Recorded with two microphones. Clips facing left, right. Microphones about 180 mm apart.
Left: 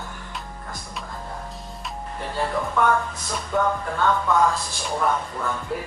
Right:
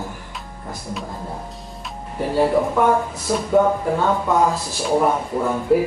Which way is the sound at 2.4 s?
20° right (ahead or behind).